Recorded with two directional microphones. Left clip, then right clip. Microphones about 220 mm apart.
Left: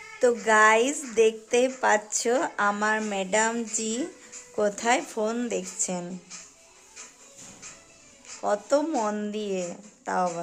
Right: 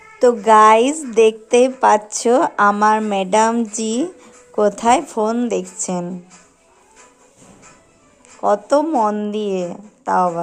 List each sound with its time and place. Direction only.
0.2 s a woman's voice: 15° right (ahead or behind)
8.4 s a woman's voice: 15° right (ahead or behind)
8.9 s a woman's voice: centre (ahead or behind)